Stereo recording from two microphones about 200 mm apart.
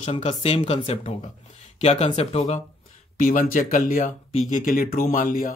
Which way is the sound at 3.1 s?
45° left (ahead or behind).